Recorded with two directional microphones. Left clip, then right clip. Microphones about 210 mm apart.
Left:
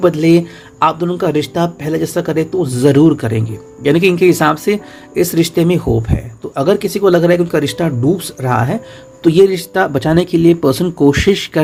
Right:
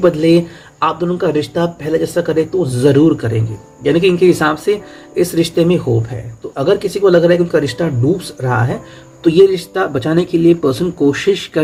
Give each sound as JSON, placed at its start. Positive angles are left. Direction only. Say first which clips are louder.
{"t": 0.0, "sound": "speech", "louder": "even", "side_deg": 40}